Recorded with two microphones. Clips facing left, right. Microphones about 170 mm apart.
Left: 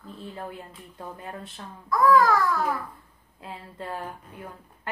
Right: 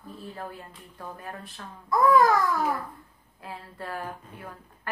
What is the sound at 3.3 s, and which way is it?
Speech, 20° left (ahead or behind).